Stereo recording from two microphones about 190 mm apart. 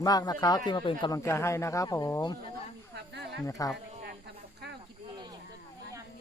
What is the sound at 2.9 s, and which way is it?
Snake, 65° right (ahead or behind).